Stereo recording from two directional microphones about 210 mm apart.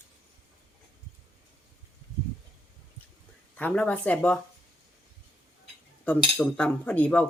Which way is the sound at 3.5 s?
5° left (ahead or behind).